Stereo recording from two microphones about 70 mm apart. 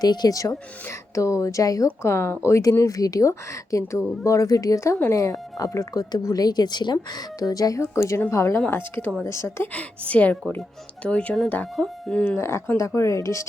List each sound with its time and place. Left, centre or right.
0.0 s speech: left
1.1 s speech: left
2.6 s speech: left
5.9 s a woman's voice: left
7.8 s a woman's voice: left
8.7 s a woman's voice: left
9.2 s a woman's voice: left
9.7 s a woman's voice: left
12.4 s a woman's voice: left